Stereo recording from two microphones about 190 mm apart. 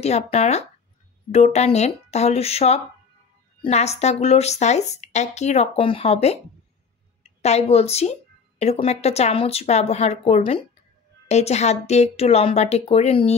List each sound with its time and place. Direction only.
0.0 s speech: 35° left (ahead or behind)
7.4 s speech: 35° left (ahead or behind)